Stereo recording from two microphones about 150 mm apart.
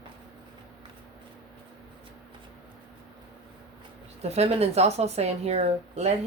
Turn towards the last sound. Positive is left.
turn(degrees=-45)  # may be behind; listen again after turning